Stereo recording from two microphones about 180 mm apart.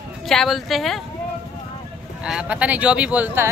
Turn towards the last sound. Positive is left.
turn(degrees=-10)  # may be behind; listen again after turning